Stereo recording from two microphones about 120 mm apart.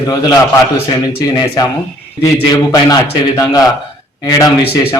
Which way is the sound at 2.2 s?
30° left (ahead or behind).